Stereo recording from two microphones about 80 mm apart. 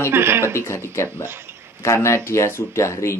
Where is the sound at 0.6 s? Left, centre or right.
Left.